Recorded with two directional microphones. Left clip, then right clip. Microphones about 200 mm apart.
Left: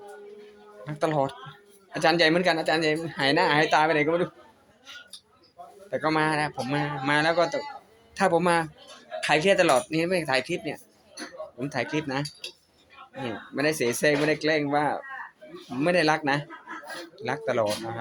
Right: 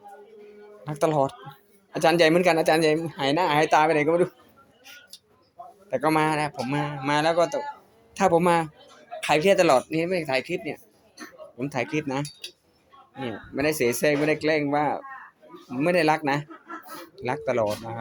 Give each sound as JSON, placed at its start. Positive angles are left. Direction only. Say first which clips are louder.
{"t": 0.9, "sound": "a man's voice", "louder": "right 3 dB", "side_deg": -15}
{"t": 5.9, "sound": "speech", "louder": "right 2 dB", "side_deg": -20}
{"t": 13.2, "sound": "speech", "louder": "right 1 dB", "side_deg": -15}